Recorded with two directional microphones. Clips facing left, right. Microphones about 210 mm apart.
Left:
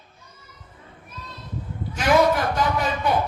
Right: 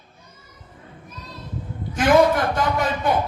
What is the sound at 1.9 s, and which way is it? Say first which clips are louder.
A man's voice: right 3 dB; 50° right (ahead or behind).